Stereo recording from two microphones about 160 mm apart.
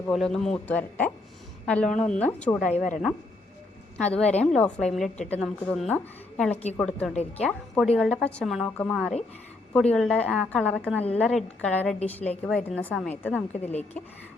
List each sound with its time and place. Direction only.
0.1 s a woman's voice: centre (ahead or behind)
2.7 s speech: 50° left (ahead or behind)
3.9 s a woman's voice: 5° left (ahead or behind)